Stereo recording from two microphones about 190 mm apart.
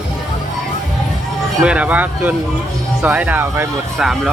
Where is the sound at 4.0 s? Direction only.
Centre (ahead or behind).